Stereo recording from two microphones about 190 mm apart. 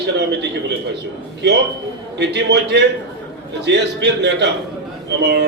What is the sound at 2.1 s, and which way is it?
A man's voice, 65° right (ahead or behind).